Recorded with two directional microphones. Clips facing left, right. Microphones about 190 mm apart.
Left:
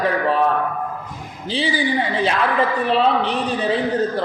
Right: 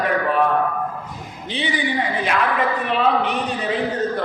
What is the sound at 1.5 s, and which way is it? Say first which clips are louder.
A woman's voice: left 3 dB; 30° left (ahead or behind).